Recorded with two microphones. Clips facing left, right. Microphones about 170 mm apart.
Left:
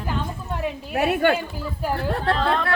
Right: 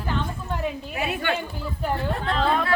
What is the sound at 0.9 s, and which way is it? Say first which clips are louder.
Speech: left 11 dB; 60° left (ahead or behind).